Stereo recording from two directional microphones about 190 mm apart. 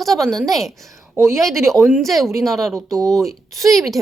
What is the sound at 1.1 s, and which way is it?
Speech, 15° right (ahead or behind).